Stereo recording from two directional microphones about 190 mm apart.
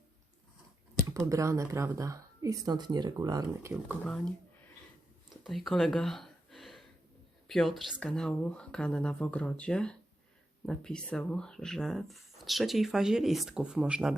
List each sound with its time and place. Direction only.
1.0 s speech: 15° right (ahead or behind)
4.0 s speech: 5° left (ahead or behind)
5.4 s a sound: centre (ahead or behind)
7.4 s speech: centre (ahead or behind)